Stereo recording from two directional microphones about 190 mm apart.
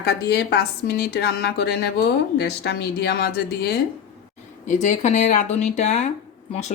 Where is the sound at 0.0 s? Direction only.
60° left (ahead or behind).